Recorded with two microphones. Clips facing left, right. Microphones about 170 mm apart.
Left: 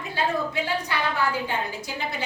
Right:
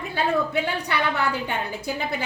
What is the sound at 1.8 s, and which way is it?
Speech, 55° right (ahead or behind).